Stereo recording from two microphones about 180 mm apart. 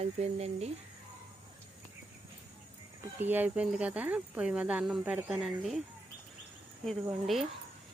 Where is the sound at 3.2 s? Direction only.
10° right (ahead or behind).